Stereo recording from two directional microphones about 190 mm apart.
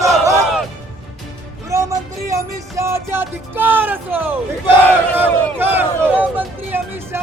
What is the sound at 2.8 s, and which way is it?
Speech, 15° right (ahead or behind).